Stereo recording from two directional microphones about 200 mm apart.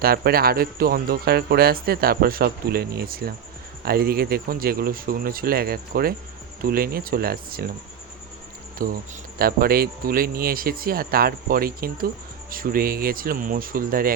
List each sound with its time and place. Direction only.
0.0 s speech: 50° right (ahead or behind)
8.8 s speech: 45° right (ahead or behind)